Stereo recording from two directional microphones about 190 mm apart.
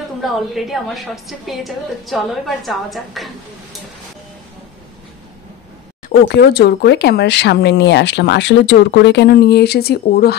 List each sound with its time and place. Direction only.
0.2 s a woman's voice: centre (ahead or behind)
6.2 s speech: 60° left (ahead or behind)